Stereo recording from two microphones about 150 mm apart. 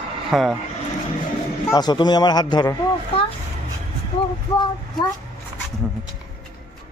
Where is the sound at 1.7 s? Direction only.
30° left (ahead or behind).